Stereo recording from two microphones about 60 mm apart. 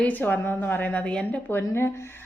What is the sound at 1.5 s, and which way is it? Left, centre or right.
Speech, left.